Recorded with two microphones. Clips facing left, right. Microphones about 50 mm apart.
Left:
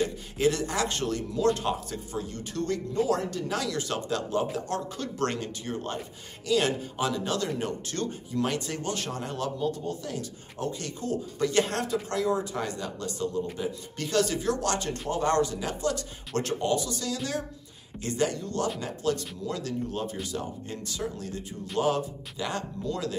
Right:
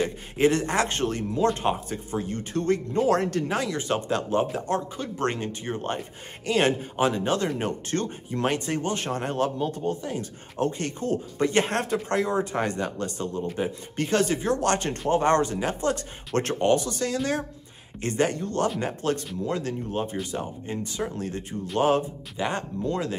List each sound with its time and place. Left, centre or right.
0.4 s speech: right
3.4 s speech: right